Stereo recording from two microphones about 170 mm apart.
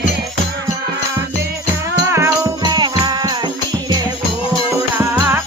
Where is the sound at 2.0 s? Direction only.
15° right (ahead or behind).